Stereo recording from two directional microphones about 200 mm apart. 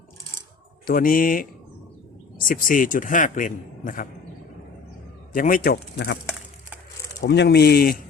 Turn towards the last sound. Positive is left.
turn(degrees=50)  # may be behind; listen again after turning